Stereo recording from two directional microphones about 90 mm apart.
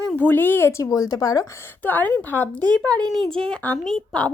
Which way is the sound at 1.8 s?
20° left (ahead or behind).